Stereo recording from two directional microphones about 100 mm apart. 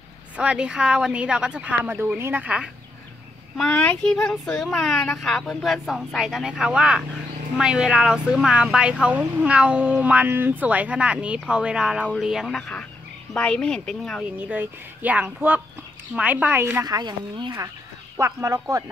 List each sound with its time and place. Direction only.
0.4 s speech: 10° right (ahead or behind)
2.4 s speech: 10° right (ahead or behind)
3.5 s a child's voice: 10° left (ahead or behind)
14.5 s speech: 15° right (ahead or behind)
16.8 s speech: 45° right (ahead or behind)
18.1 s speech: 30° right (ahead or behind)